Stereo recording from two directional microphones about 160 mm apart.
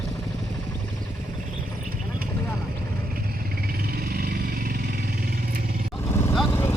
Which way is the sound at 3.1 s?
70° right (ahead or behind).